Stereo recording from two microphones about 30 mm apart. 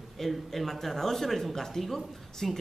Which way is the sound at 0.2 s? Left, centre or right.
Centre.